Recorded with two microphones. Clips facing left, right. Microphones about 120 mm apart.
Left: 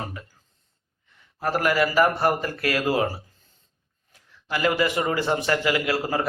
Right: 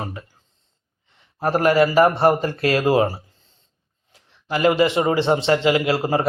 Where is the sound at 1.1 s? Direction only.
30° right (ahead or behind).